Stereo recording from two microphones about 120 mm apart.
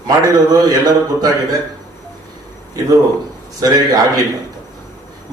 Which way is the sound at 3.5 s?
30° right (ahead or behind).